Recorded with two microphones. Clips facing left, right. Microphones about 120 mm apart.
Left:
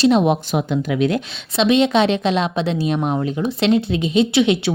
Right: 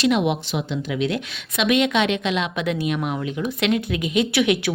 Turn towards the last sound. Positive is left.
turn(degrees=25)  # may be behind; listen again after turning